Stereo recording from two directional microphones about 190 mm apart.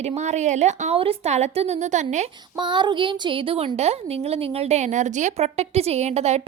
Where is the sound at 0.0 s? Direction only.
35° right (ahead or behind).